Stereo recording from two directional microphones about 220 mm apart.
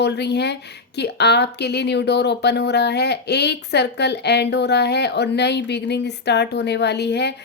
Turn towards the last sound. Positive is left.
turn(degrees=50)  # may be behind; listen again after turning